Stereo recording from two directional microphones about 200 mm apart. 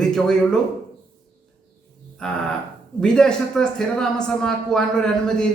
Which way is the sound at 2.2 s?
5° left (ahead or behind).